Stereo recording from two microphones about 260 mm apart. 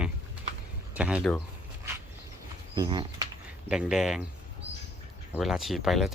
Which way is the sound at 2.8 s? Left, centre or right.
Centre.